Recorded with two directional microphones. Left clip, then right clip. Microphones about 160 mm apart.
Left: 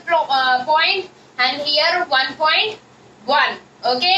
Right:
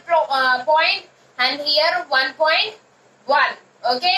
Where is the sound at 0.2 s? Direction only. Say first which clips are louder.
Left 2 dB; 20° left (ahead or behind).